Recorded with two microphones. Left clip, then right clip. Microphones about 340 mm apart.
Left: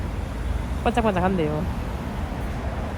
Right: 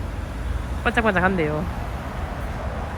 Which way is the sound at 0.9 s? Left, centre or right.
Centre.